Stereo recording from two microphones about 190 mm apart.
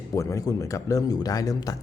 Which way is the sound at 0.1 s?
15° left (ahead or behind).